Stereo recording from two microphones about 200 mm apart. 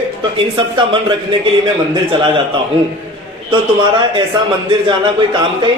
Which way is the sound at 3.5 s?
25° right (ahead or behind).